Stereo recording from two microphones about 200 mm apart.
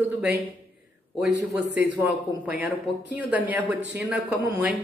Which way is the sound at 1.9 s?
10° right (ahead or behind).